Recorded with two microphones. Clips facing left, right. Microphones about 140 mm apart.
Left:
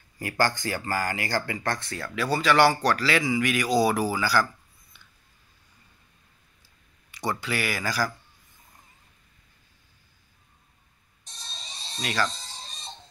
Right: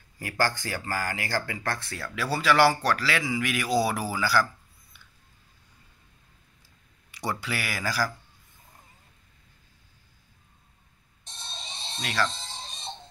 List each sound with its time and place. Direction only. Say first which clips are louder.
0.2 s speech: left 2 dB; centre (ahead or behind)
7.1 s speech: left 2 dB; 5° right (ahead or behind)
11.5 s a sound: right 3 dB; 25° right (ahead or behind)
12.0 s speech: left 1 dB; centre (ahead or behind)
12.4 s music: right 2 dB; 25° right (ahead or behind)